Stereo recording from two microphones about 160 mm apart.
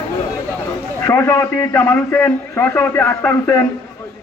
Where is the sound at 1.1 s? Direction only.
15° left (ahead or behind).